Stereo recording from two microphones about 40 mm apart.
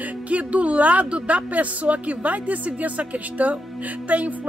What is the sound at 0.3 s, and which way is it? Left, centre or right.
A woman's voice, right.